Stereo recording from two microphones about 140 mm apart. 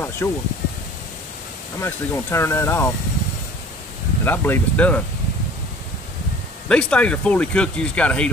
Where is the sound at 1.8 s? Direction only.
15° left (ahead or behind).